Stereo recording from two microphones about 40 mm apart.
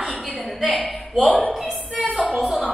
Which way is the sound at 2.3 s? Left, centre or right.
Centre.